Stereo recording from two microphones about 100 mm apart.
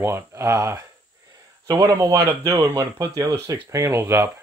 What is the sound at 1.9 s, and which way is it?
Speech, 35° right (ahead or behind).